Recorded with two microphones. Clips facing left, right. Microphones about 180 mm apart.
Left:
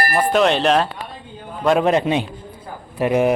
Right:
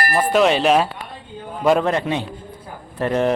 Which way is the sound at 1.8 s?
20° left (ahead or behind).